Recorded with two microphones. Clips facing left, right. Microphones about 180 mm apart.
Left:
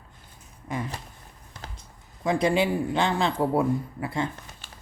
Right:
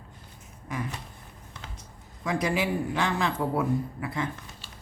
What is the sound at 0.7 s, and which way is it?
Speech, 30° left (ahead or behind).